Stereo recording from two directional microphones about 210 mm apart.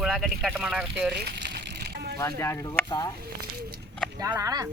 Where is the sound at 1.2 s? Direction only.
50° right (ahead or behind).